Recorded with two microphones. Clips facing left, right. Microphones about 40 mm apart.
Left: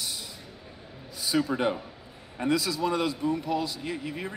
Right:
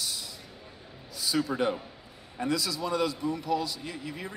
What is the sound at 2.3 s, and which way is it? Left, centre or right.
A man's voice, left.